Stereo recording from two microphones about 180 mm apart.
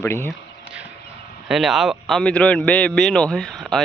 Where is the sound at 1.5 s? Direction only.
Centre (ahead or behind).